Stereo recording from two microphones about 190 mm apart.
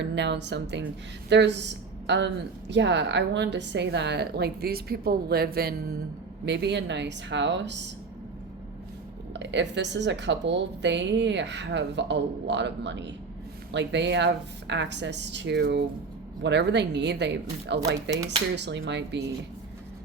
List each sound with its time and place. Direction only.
0.0 s a woman's voice: 65° right (ahead or behind)
9.3 s a woman's voice: 70° right (ahead or behind)
18.1 s speech: 20° right (ahead or behind)
18.5 s a woman's voice: 65° right (ahead or behind)